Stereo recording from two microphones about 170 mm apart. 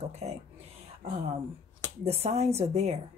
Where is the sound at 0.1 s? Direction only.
40° right (ahead or behind).